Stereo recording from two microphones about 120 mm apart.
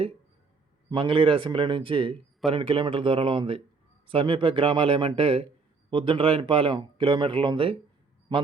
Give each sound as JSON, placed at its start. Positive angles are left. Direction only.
{"t": 0.9, "sound": "speech", "side_deg": -45}